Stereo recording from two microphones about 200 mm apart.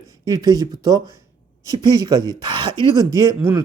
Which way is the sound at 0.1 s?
20° right (ahead or behind).